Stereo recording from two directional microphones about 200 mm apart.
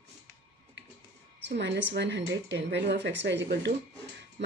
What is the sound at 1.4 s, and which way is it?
Speech, 60° right (ahead or behind).